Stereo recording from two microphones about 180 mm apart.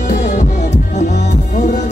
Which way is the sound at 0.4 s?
40° left (ahead or behind).